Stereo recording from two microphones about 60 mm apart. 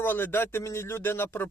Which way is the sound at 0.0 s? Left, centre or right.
Left.